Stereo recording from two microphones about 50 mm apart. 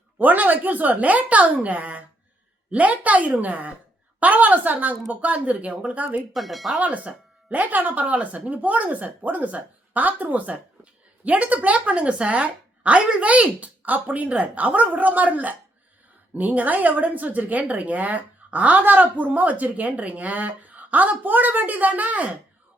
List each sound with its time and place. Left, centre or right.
0.2 s a woman's voice: right
6.3 s speech: centre
6.7 s a woman's voice: right